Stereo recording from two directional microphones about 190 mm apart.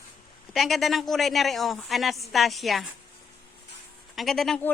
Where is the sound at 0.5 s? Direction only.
Centre (ahead or behind).